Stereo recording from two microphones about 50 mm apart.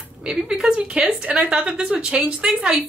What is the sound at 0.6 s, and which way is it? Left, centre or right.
A woman's voice, right.